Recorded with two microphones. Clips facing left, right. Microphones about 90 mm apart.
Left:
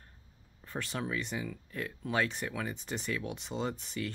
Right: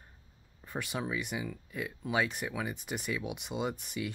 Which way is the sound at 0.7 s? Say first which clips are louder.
Right 1 dB; 10° right (ahead or behind).